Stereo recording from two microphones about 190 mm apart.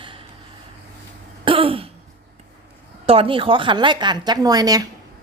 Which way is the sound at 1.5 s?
30° right (ahead or behind).